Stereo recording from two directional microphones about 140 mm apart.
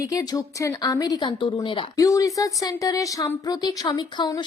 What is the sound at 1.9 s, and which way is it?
Speech, 25° left (ahead or behind).